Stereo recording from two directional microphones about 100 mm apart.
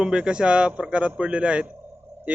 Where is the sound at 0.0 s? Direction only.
10° right (ahead or behind).